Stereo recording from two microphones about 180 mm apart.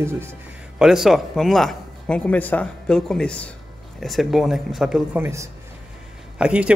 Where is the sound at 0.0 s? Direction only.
15° right (ahead or behind).